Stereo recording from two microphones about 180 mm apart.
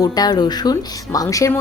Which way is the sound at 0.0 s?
20° left (ahead or behind).